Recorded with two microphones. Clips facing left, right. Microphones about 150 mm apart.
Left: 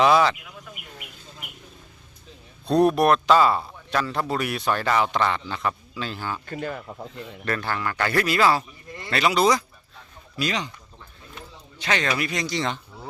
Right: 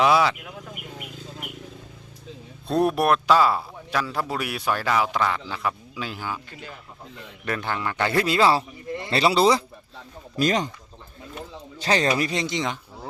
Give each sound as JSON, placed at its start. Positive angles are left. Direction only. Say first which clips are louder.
{"t": 0.0, "sound": "speech", "louder": "left 1 dB", "side_deg": -5}
{"t": 0.8, "sound": "a sound", "louder": "right 6 dB", "side_deg": -50}
{"t": 2.6, "sound": "speech", "louder": "left 2 dB", "side_deg": -5}
{"t": 6.5, "sound": "speech", "louder": "left 10 dB", "side_deg": 55}
{"t": 7.4, "sound": "a man's voice", "louder": "even", "side_deg": -15}
{"t": 10.3, "sound": "speech", "louder": "right 5 dB", "side_deg": -45}
{"t": 11.8, "sound": "speech", "louder": "right 3 dB", "side_deg": -35}